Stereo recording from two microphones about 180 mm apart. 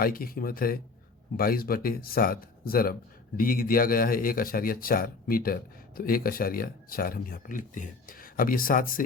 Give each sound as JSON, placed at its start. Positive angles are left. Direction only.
{"t": 0.0, "sound": "speech", "side_deg": 55}